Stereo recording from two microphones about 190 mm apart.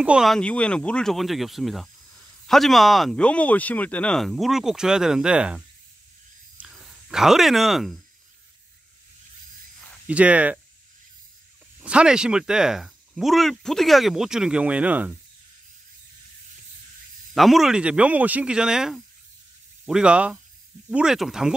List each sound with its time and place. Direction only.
0.0 s speech: 5° right (ahead or behind)
6.6 s speech: centre (ahead or behind)
10.0 s speech: 5° right (ahead or behind)
11.8 s speech: 5° right (ahead or behind)
17.3 s speech: centre (ahead or behind)